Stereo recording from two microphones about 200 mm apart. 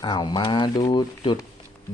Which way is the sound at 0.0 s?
20° left (ahead or behind).